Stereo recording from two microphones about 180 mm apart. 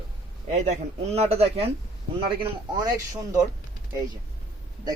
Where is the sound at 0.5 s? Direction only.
40° right (ahead or behind).